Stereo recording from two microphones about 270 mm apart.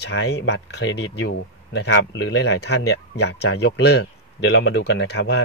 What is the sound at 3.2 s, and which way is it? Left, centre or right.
A man's voice, left.